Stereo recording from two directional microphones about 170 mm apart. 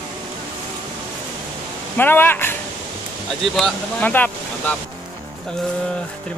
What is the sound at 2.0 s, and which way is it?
Speech, 10° left (ahead or behind).